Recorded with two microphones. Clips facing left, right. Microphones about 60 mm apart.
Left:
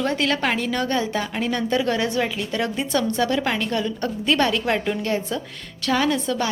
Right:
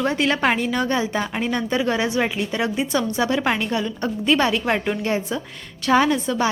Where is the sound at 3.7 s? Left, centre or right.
Centre.